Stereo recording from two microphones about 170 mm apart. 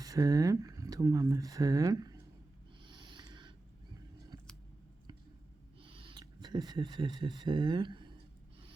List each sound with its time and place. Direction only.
0.0 s speech: 20° right (ahead or behind)
2.8 s a sound: 30° right (ahead or behind)
5.8 s speech: 30° right (ahead or behind)